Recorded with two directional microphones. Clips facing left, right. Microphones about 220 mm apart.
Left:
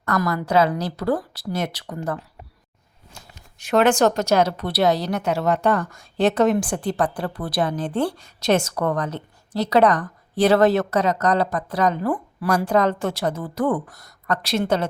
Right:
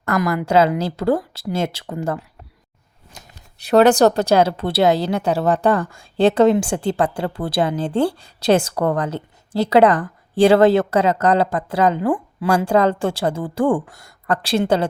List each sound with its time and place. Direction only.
0.0 s speech: 25° right (ahead or behind)
3.6 s speech: 35° right (ahead or behind)